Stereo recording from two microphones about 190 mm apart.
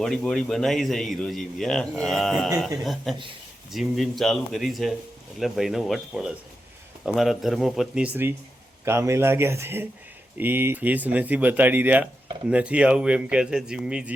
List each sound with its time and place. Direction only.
0.0 s a man's voice: centre (ahead or behind)